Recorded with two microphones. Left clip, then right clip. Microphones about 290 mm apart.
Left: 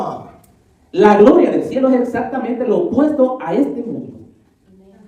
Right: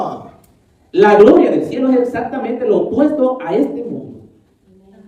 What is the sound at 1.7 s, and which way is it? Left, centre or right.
Speech, centre.